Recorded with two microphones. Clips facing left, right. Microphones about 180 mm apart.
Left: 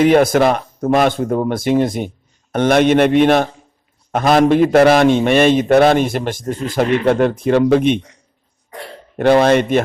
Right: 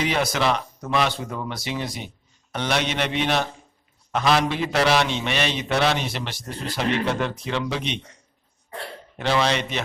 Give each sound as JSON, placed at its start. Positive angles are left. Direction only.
{"t": 0.0, "sound": "a man's voice", "side_deg": 50}
{"t": 9.1, "sound": "a man's voice", "side_deg": 55}